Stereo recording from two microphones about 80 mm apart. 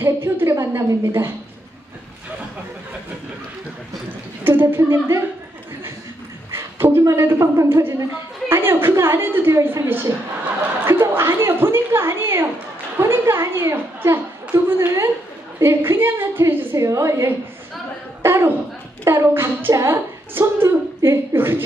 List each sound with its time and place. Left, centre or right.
0.0 s a woman's voice: right
4.5 s a woman's voice: right
6.5 s a woman's voice: right
10.9 s a woman's voice: right
18.2 s a sound: right
19.0 s a woman's voice: right